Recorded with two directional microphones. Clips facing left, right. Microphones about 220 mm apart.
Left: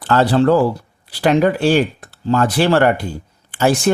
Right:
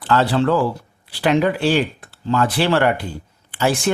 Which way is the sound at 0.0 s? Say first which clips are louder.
Left 4 dB; 45° left (ahead or behind).